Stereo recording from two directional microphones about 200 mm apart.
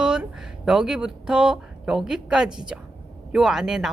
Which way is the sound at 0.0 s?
5° right (ahead or behind).